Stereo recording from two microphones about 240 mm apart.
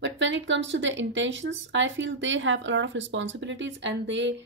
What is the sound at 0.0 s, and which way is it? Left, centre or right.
Speech, right.